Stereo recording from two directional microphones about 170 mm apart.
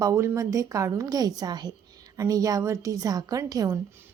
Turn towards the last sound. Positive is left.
turn(degrees=-20)  # may be behind; listen again after turning